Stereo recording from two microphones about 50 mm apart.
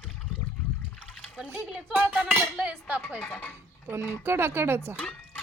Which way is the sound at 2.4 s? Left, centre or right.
Right.